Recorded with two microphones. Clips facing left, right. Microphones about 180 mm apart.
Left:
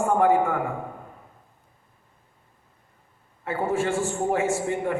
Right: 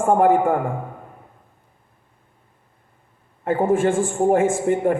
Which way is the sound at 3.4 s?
50° right (ahead or behind).